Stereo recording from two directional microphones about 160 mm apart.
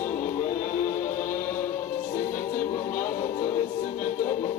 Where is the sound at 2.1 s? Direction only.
55° left (ahead or behind).